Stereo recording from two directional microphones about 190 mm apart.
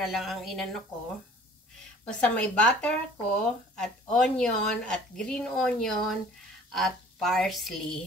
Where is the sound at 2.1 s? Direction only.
5° left (ahead or behind).